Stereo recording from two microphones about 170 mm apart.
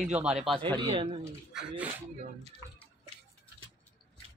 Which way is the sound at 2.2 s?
40° right (ahead or behind).